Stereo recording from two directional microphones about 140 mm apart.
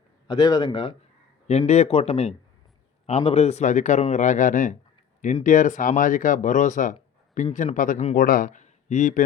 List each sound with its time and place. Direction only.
0.3 s a man's voice: 25° left (ahead or behind)
1.5 s a man's voice: 50° left (ahead or behind); by 8.0 s 70° left (ahead or behind)
8.1 s a man's voice: 90° left; by 9.2 s 60° left (ahead or behind)